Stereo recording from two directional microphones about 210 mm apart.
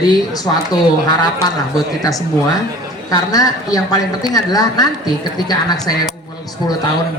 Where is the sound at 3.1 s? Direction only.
15° left (ahead or behind).